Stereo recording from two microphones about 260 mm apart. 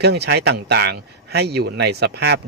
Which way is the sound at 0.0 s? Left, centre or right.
Right.